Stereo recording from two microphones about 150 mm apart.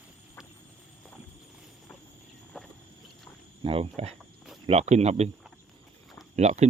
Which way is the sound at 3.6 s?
40° right (ahead or behind).